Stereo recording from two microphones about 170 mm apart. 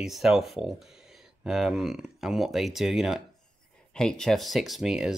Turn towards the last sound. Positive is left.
turn(degrees=0)  # may be behind; listen again after turning